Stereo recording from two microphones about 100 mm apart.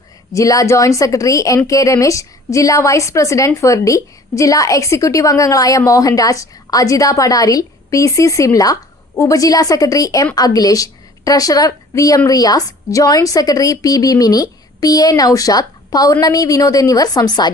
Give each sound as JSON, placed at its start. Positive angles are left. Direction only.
{"t": 0.3, "sound": "a woman's voice", "side_deg": 35}